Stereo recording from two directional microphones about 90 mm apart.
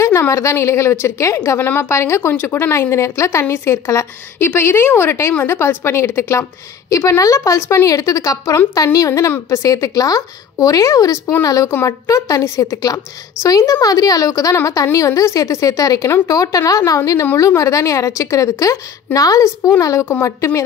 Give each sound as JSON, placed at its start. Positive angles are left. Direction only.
{"t": 0.0, "sound": "a woman's voice", "side_deg": 35}